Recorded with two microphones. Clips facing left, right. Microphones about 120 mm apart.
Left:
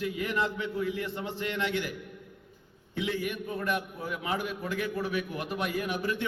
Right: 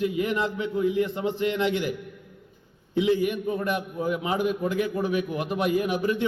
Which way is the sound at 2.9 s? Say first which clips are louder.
Right 9 dB; 20° right (ahead or behind).